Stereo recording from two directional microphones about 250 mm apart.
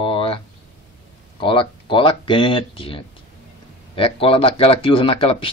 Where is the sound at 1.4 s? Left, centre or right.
Centre.